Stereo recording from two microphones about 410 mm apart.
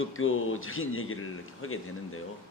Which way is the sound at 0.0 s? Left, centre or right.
Left.